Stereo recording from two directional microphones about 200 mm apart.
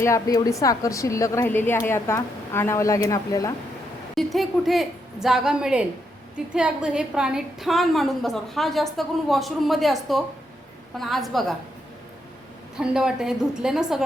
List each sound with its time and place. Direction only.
0.0 s a woman's voice: 15° left (ahead or behind)
4.1 s a woman's voice: centre (ahead or behind)
12.7 s a woman's voice: 5° right (ahead or behind)